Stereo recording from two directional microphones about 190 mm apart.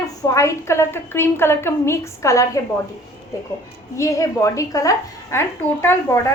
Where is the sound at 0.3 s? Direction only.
15° left (ahead or behind).